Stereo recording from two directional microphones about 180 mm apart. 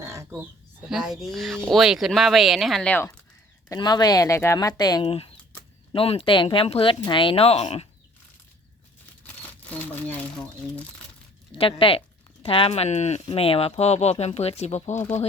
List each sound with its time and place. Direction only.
0.0 s a sound: 15° right (ahead or behind)
0.9 s speech: centre (ahead or behind)
3.7 s speech: 25° left (ahead or behind)
9.2 s speech: 10° left (ahead or behind)
11.5 s speech: 30° left (ahead or behind)